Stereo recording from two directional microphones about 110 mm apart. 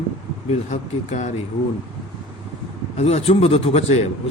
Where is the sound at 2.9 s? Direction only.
70° left (ahead or behind).